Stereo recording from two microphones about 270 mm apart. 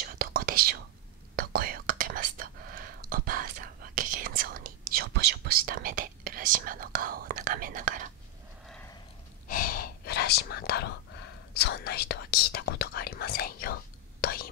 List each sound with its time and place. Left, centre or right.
0.0 s whispering: right
9.5 s whispering: left
11.5 s speech: left
14.2 s whispering: left